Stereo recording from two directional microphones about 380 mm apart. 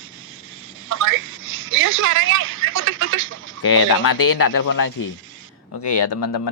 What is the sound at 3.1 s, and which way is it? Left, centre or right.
Chicken, right.